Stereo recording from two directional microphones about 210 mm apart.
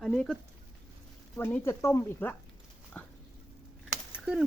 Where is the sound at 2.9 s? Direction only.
5° left (ahead or behind).